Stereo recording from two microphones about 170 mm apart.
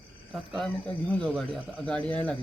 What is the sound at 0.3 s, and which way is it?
Speech, centre (ahead or behind).